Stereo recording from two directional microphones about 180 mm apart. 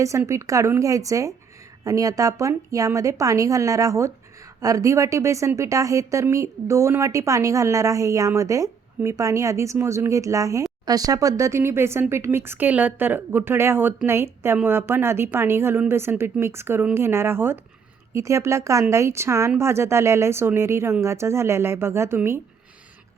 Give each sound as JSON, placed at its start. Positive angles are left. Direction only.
{"t": 0.0, "sound": "a woman's voice", "side_deg": -15}